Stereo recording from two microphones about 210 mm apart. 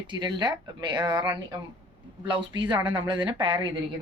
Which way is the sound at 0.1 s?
20° right (ahead or behind).